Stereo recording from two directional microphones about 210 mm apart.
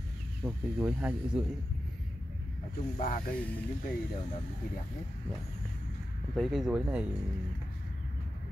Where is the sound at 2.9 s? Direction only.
40° left (ahead or behind).